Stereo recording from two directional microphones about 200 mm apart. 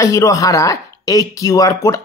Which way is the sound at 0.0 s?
15° left (ahead or behind).